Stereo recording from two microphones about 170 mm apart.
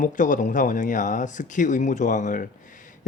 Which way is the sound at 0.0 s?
50° left (ahead or behind).